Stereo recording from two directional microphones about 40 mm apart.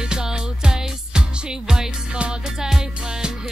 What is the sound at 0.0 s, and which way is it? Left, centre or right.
Music, centre.